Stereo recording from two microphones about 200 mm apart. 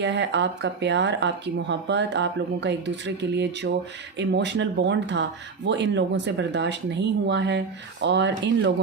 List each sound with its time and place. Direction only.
0.0 s speech: 60° right (ahead or behind)